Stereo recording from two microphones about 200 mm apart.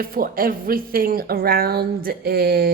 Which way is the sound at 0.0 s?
45° right (ahead or behind).